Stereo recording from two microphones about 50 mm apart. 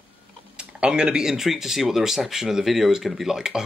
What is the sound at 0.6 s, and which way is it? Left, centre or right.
Speech, centre.